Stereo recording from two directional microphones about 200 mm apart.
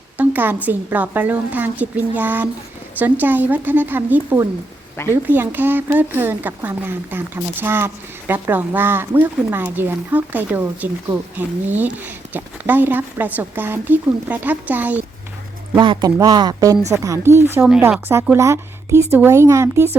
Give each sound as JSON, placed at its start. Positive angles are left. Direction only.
{"t": 0.2, "sound": "speech", "side_deg": -10}
{"t": 15.7, "sound": "speech", "side_deg": -20}